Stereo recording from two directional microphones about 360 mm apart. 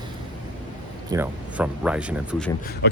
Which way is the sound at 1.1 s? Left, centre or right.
Centre.